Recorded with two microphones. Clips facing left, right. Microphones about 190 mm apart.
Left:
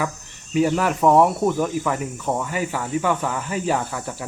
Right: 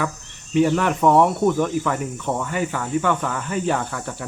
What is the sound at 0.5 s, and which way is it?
Speech, 5° left (ahead or behind).